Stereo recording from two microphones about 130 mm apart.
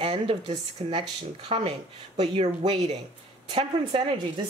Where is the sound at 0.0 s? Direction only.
45° right (ahead or behind).